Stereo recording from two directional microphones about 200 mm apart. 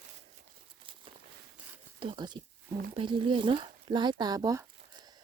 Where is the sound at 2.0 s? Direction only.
25° right (ahead or behind).